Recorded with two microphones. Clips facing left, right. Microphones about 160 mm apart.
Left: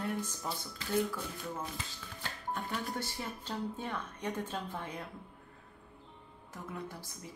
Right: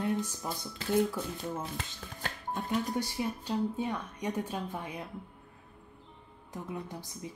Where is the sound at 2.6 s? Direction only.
15° right (ahead or behind).